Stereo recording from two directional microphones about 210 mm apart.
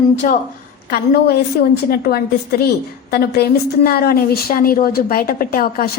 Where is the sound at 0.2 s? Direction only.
40° left (ahead or behind).